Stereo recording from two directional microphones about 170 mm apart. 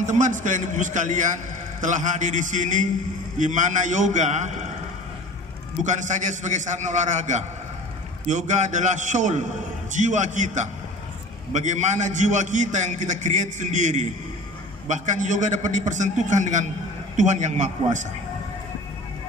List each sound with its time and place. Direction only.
0.0 s a man's voice: 45° right (ahead or behind)
5.9 s a man's voice: 45° right (ahead or behind)